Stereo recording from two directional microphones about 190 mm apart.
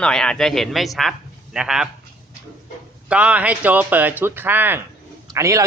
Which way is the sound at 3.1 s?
5° right (ahead or behind).